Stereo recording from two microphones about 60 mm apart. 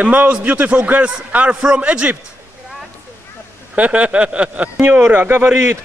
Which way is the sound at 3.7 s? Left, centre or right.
Right.